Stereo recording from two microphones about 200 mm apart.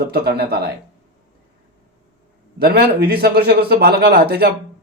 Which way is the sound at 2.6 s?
50° right (ahead or behind).